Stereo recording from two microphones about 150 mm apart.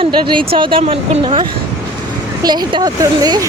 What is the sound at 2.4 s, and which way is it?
Speech, 30° right (ahead or behind).